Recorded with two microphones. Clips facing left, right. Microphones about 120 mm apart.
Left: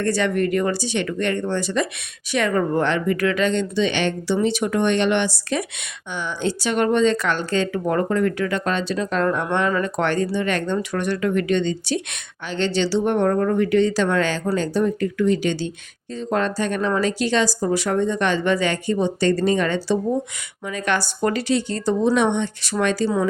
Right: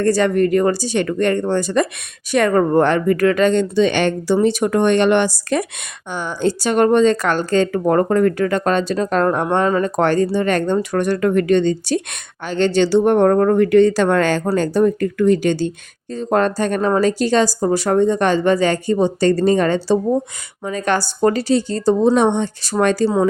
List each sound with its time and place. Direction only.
0.0 s a woman's voice: 40° right (ahead or behind)